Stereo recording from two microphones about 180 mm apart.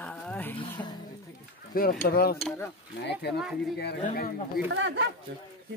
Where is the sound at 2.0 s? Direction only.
60° left (ahead or behind).